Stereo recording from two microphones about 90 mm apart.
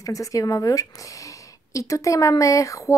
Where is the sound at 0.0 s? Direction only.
40° left (ahead or behind).